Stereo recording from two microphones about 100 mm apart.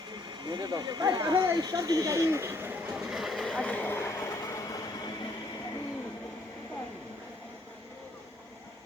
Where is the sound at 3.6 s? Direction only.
15° left (ahead or behind); by 5.1 s 40° left (ahead or behind).